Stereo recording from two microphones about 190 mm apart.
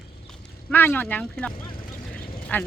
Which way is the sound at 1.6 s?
50° left (ahead or behind).